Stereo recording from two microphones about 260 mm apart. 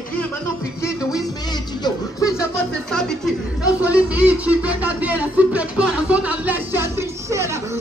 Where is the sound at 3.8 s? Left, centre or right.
Centre.